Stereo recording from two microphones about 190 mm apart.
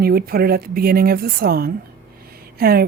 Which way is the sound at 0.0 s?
55° right (ahead or behind).